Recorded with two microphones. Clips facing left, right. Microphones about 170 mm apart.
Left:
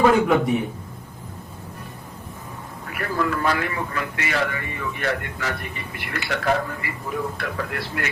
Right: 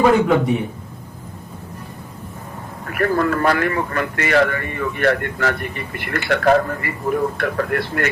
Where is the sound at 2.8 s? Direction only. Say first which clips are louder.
Right 7 dB; 55° right (ahead or behind).